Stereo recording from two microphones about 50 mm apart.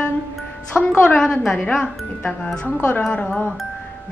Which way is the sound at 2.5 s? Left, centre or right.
Left.